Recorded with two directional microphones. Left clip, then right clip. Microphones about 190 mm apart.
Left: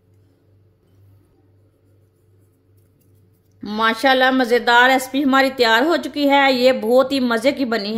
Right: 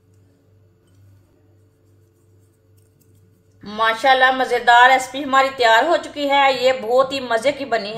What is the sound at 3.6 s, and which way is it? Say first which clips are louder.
A woman's voice: even; 50° left (ahead or behind).